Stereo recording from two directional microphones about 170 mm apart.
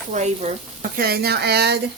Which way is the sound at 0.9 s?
65° right (ahead or behind).